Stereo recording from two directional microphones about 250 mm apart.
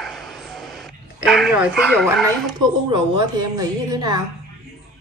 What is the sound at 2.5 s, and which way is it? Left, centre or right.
A woman's voice, centre.